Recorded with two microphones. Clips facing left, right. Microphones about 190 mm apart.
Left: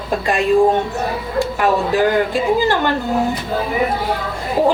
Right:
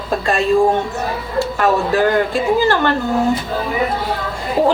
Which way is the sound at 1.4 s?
15° left (ahead or behind).